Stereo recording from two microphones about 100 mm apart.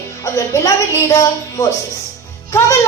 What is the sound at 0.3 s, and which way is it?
A woman's voice, 30° left (ahead or behind).